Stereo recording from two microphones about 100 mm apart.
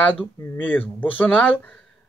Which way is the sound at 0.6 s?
20° left (ahead or behind).